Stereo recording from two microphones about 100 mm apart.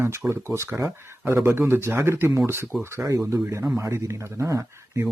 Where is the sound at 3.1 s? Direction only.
30° right (ahead or behind).